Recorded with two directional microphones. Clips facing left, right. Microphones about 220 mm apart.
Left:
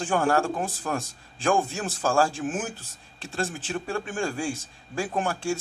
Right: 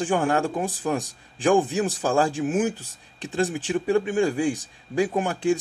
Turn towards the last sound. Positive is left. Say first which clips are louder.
# right 5 dB
turn(degrees=-20)  # may be behind; listen again after turning